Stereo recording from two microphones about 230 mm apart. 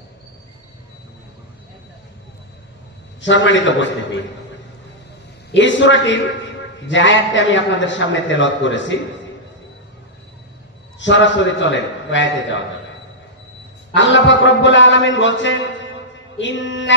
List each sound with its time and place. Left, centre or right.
3.2 s a man's voice: left
5.5 s a man's voice: left
11.0 s a man's voice: left
13.9 s a man's voice: left